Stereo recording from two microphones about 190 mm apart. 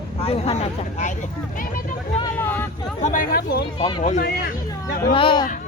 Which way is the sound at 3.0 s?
50° left (ahead or behind).